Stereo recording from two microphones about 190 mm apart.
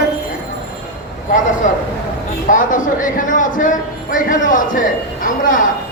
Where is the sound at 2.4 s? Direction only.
45° left (ahead or behind).